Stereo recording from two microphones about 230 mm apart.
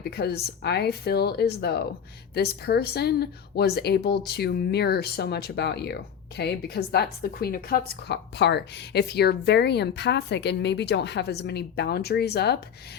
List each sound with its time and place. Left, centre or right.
0.0 s speech: left